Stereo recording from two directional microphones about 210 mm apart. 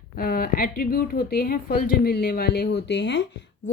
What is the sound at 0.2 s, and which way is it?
A woman's voice, 45° left (ahead or behind).